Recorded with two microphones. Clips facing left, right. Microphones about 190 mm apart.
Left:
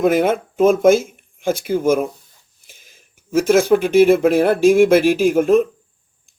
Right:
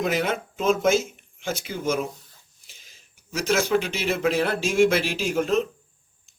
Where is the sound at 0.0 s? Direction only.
50° left (ahead or behind).